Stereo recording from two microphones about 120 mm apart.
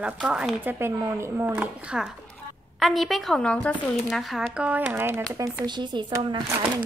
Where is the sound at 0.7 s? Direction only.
20° right (ahead or behind); by 3.8 s 10° left (ahead or behind).